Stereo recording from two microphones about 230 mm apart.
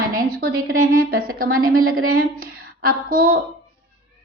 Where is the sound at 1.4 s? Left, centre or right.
Right.